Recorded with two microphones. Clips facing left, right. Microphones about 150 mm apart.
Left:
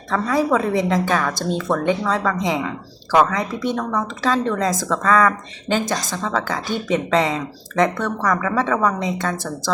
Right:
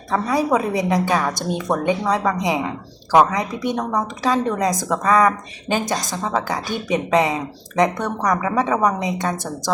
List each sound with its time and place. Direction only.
0.1 s a woman's voice: 15° right (ahead or behind)